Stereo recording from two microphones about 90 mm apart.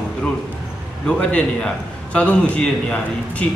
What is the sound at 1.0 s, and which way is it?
A man's voice, 10° left (ahead or behind).